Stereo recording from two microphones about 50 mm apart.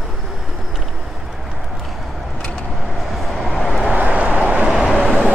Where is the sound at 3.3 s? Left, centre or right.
Centre.